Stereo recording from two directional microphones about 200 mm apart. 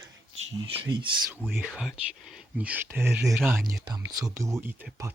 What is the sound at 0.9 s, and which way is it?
Speech, 20° right (ahead or behind).